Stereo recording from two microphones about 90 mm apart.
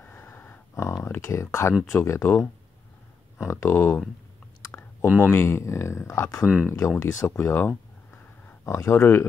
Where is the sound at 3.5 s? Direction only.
30° left (ahead or behind).